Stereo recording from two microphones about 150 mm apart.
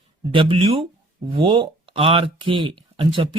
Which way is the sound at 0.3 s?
40° right (ahead or behind).